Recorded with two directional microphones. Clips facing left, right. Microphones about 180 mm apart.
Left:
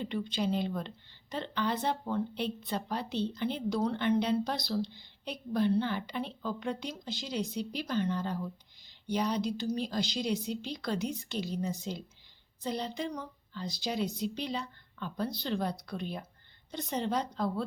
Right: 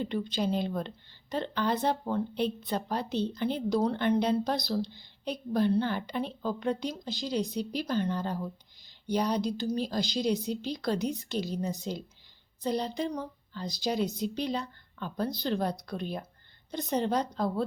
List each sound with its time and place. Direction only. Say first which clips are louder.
0.0 s a woman's voice: right 2 dB; 40° right (ahead or behind)